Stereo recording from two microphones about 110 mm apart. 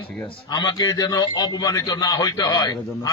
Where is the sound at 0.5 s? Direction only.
40° left (ahead or behind).